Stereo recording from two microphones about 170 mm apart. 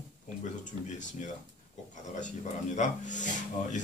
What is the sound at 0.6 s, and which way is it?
Speech, 45° left (ahead or behind).